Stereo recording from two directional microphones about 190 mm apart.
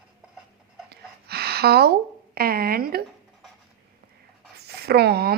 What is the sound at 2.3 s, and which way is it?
Speech, 50° right (ahead or behind).